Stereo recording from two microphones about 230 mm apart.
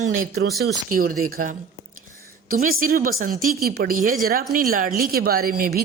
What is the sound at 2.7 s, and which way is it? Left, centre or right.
Speech, right.